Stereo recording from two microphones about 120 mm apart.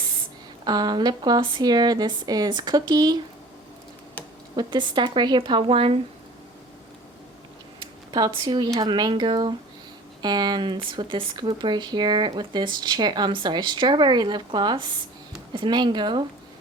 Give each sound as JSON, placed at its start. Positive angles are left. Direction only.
{"t": 0.6, "sound": "speech", "side_deg": -35}
{"t": 4.5, "sound": "speech", "side_deg": -40}
{"t": 7.8, "sound": "a sound", "side_deg": -35}
{"t": 8.7, "sound": "speech", "side_deg": -35}